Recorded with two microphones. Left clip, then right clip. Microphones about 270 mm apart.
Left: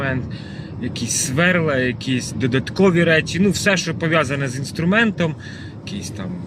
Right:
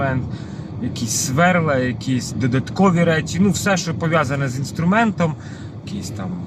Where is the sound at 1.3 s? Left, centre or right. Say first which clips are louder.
Right 1 dB; right.